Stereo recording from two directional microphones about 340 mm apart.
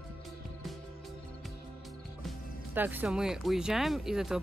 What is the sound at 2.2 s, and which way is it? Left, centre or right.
Speech, centre.